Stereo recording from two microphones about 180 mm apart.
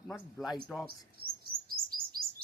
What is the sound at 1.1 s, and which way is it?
Chirp, 55° right (ahead or behind).